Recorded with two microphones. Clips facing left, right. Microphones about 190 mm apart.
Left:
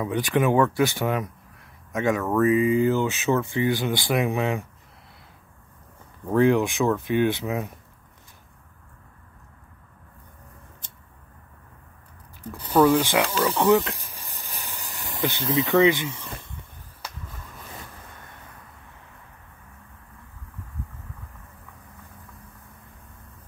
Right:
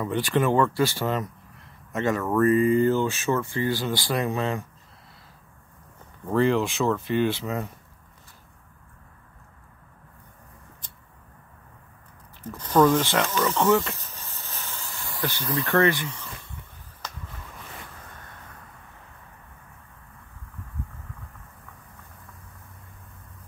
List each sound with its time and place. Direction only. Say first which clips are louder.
0.4 s speech: left 2 dB; 15° left (ahead or behind)
2.1 s speech: right 1 dB; 5° left (ahead or behind)
6.3 s speech: left 3 dB; 15° left (ahead or behind)
12.4 s speech: left 1 dB; 10° left (ahead or behind)
17.0 s a sound: even; 10° left (ahead or behind)